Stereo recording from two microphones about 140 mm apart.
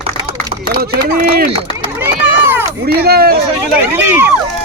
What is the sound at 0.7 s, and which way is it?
Speech, 90° right.